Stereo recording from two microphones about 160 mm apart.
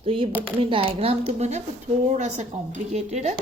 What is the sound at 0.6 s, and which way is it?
Speech, 35° right (ahead or behind).